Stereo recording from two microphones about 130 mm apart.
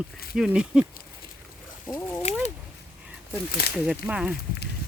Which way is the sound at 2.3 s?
60° left (ahead or behind).